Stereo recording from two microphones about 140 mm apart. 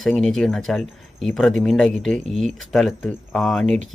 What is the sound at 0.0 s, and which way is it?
Speech, 5° left (ahead or behind).